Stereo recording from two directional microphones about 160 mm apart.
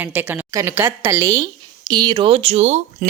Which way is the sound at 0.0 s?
15° right (ahead or behind).